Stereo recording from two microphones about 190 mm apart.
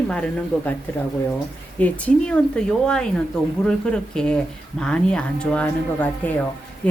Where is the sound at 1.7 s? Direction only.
5° left (ahead or behind).